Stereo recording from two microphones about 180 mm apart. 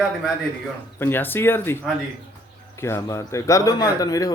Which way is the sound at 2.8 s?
15° left (ahead or behind).